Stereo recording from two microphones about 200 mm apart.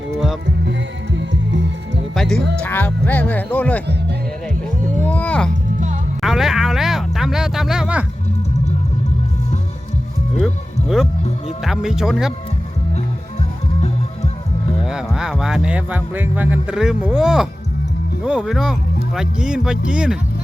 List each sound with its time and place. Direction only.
0.4 s music: 65° right (ahead or behind)
2.1 s music: centre (ahead or behind)
2.6 s speech: 10° left (ahead or behind)
4.9 s music: 5° left (ahead or behind)
6.2 s a sound: centre (ahead or behind)
10.4 s music: centre (ahead or behind)
11.6 s speech: centre (ahead or behind)
14.8 s speech: 5° right (ahead or behind)